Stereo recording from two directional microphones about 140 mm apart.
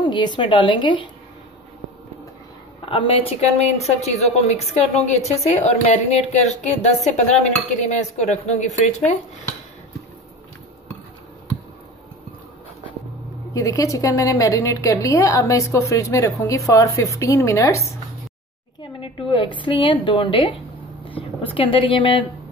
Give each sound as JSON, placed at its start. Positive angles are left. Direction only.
{"t": 0.0, "sound": "a woman's voice", "side_deg": 35}
{"t": 2.8, "sound": "a woman's voice", "side_deg": 40}
{"t": 7.1, "sound": "cutlery", "side_deg": 55}
{"t": 13.5, "sound": "a woman's voice", "side_deg": 25}
{"t": 18.8, "sound": "a woman's voice", "side_deg": 35}
{"t": 21.1, "sound": "a sound", "side_deg": 40}
{"t": 21.5, "sound": "a woman's voice", "side_deg": 35}